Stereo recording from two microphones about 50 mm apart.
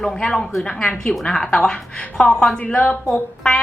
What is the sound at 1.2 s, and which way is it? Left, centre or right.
A woman's voice, centre.